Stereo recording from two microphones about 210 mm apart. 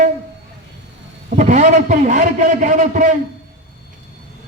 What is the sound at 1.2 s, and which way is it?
A man's voice, 35° right (ahead or behind).